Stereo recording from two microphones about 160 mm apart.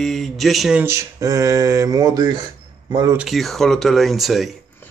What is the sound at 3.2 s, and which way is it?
Speech, centre (ahead or behind).